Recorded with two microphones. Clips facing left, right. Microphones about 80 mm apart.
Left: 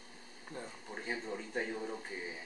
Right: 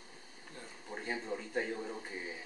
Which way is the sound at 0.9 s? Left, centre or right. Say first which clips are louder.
Right 2 dB; centre.